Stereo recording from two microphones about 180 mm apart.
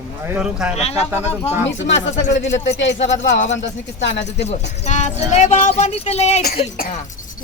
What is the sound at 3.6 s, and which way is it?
Speech, 80° left.